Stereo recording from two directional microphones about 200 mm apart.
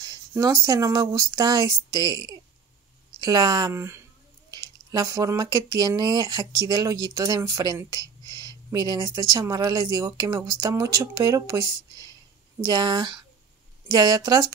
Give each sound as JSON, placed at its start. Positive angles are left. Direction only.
{"t": 0.0, "sound": "speech", "side_deg": -20}